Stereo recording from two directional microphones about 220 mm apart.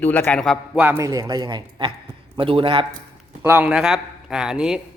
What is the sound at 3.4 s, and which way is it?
A man's voice, 10° right (ahead or behind).